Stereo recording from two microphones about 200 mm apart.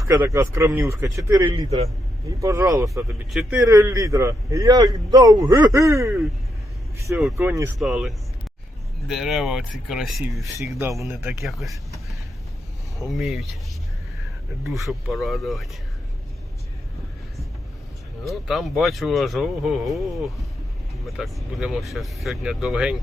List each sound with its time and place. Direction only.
0.0 s a man's voice: 15° right (ahead or behind)
7.3 s a man's voice: 10° right (ahead or behind)
13.1 s speech: centre (ahead or behind)
14.7 s speech: centre (ahead or behind)
18.3 s speech: centre (ahead or behind)